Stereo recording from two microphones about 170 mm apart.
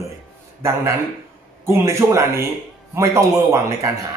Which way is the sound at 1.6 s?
15° right (ahead or behind).